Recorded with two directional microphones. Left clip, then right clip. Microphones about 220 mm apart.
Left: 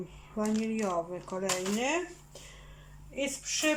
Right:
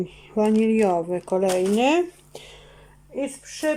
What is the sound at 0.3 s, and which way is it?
Speech, 50° right (ahead or behind).